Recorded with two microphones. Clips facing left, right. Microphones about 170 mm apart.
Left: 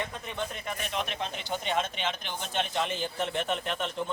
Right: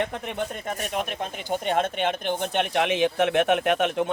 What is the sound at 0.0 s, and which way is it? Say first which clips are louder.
Speech: right 7 dB; 70° right (ahead or behind).